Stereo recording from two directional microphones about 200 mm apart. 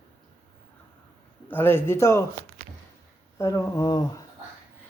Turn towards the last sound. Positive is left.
turn(degrees=20)  # may be behind; listen again after turning